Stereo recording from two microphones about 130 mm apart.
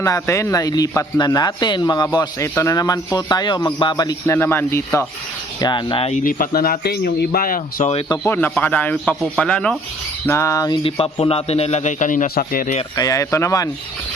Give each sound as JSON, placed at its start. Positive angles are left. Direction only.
{"t": 0.0, "sound": "speech", "side_deg": 25}
{"t": 2.1, "sound": "speech", "side_deg": 25}
{"t": 4.4, "sound": "speech", "side_deg": 15}
{"t": 5.5, "sound": "speech", "side_deg": 35}
{"t": 6.1, "sound": "speech", "side_deg": 90}
{"t": 8.2, "sound": "speech", "side_deg": 15}
{"t": 10.2, "sound": "speech", "side_deg": 20}
{"t": 10.8, "sound": "a man's voice", "side_deg": 45}
{"t": 13.0, "sound": "speech", "side_deg": 25}